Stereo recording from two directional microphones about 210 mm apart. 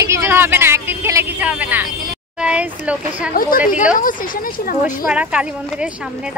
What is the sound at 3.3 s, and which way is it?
Speech, 40° left (ahead or behind).